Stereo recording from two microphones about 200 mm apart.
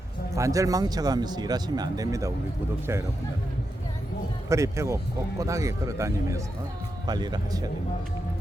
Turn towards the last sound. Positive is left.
turn(degrees=-20)  # may be behind; listen again after turning